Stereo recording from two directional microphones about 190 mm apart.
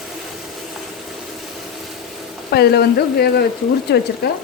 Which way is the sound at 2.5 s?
60° left (ahead or behind).